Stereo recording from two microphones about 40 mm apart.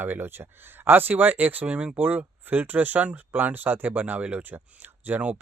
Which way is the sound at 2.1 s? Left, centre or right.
Right.